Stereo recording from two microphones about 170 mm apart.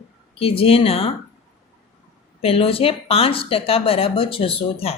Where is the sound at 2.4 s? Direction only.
35° left (ahead or behind).